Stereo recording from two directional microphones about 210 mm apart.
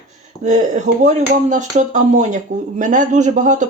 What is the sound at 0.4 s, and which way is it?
Speech, 35° right (ahead or behind).